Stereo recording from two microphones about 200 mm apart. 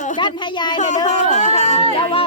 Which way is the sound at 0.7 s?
35° left (ahead or behind).